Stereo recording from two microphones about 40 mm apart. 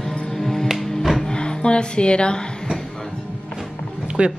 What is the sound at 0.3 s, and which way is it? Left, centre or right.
Music, centre.